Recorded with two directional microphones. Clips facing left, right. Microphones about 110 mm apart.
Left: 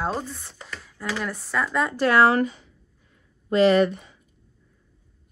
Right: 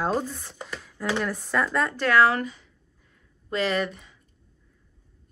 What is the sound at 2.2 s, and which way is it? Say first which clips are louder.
Speech: left 2 dB; 35° left (ahead or behind).